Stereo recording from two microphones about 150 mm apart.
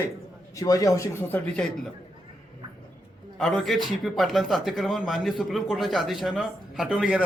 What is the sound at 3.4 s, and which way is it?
A man's voice, 5° left (ahead or behind).